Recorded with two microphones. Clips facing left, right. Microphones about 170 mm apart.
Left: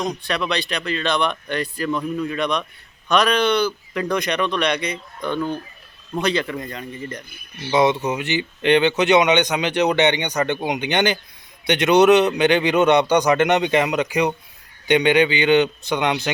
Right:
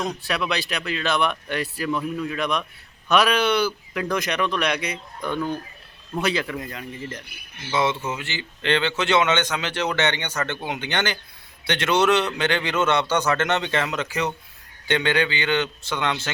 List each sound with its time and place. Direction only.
0.2 s speech: 5° right (ahead or behind)
7.7 s speech: 20° left (ahead or behind)